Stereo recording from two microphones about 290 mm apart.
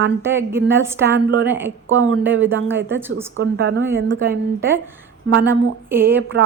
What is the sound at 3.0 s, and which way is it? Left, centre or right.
Speech, centre.